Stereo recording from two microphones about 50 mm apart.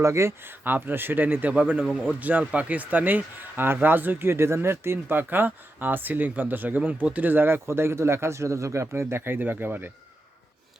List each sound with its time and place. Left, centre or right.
0.0 s speech: right
0.4 s speech: right
1.5 s speech: right
9.0 s speech: right
9.4 s speech: right